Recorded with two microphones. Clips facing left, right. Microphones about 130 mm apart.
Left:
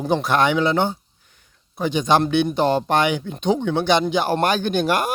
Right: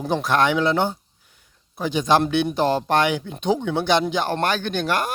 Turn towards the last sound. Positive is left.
turn(degrees=15)  # may be behind; listen again after turning